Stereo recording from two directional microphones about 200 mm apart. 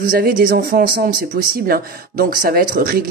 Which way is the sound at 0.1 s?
50° right (ahead or behind).